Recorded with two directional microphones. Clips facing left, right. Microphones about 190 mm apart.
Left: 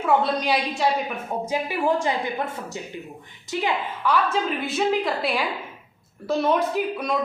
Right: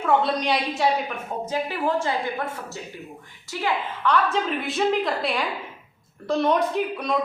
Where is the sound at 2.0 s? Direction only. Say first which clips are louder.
Left 1 dB; 15° left (ahead or behind).